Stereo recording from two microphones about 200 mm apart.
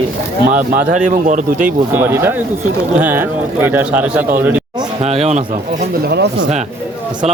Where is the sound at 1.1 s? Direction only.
40° right (ahead or behind).